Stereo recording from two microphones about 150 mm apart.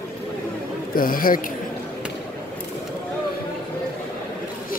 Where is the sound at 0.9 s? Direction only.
70° left (ahead or behind).